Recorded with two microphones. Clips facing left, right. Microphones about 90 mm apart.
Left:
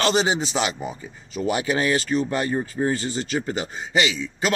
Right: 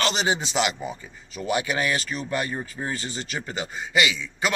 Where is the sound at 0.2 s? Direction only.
25° left (ahead or behind).